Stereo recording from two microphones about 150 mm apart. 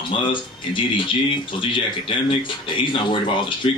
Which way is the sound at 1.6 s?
35° left (ahead or behind).